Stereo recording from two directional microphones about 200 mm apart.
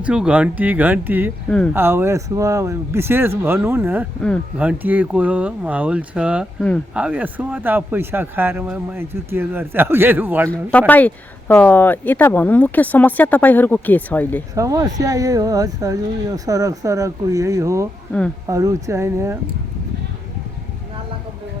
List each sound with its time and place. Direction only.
0.0 s speech: 5° right (ahead or behind)
1.5 s speech: 5° left (ahead or behind)
1.7 s speech: 10° right (ahead or behind)
10.5 s speech: 5° left (ahead or behind)
14.5 s speech: 15° right (ahead or behind)